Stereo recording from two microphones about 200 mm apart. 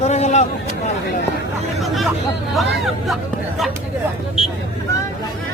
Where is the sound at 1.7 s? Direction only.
Centre (ahead or behind).